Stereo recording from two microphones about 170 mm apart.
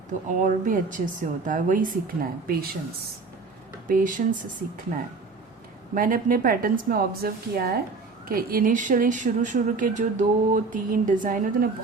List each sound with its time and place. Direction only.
0.1 s a woman's voice: 50° right (ahead or behind)